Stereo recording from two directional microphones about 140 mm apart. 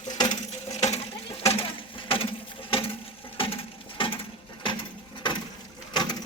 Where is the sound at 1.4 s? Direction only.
40° left (ahead or behind).